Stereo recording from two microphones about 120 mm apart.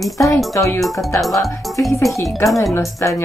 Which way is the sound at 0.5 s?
25° left (ahead or behind).